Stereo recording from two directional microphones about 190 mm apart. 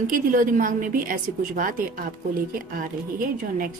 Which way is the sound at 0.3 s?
45° right (ahead or behind).